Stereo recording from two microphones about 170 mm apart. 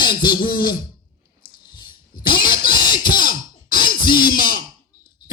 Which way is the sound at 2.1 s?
55° left (ahead or behind).